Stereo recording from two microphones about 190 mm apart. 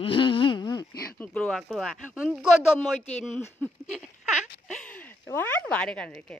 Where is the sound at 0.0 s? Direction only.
30° left (ahead or behind).